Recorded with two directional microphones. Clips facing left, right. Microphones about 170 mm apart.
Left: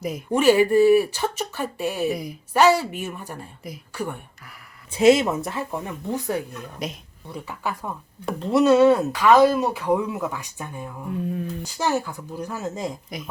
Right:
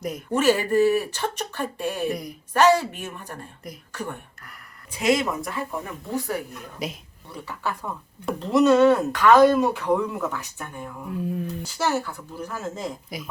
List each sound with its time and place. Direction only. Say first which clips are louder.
0.3 s speech: left 4 dB; 15° left (ahead or behind)
4.9 s speech: left 6 dB; 30° left (ahead or behind)
6.8 s speech: even; centre (ahead or behind)
7.3 s speech: left 1 dB; 10° left (ahead or behind)
8.2 s speech: even; centre (ahead or behind)
11.6 s speech: left 1 dB; 15° left (ahead or behind)
13.1 s speech: left 1 dB; 5° right (ahead or behind)